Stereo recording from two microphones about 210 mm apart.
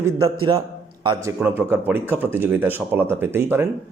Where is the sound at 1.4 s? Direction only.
10° right (ahead or behind).